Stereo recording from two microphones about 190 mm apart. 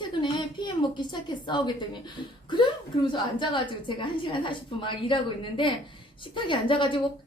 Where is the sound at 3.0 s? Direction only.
25° left (ahead or behind).